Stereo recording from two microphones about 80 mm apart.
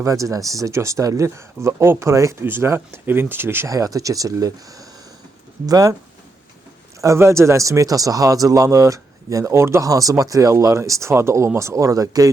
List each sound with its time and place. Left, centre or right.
0.0 s speech: right
3.7 s speech: right
7.0 s speech: right